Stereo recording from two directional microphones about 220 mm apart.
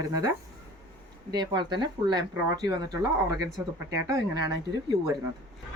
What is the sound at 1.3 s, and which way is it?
Speech, 20° right (ahead or behind).